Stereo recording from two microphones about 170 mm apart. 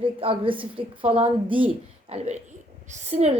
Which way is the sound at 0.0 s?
30° right (ahead or behind).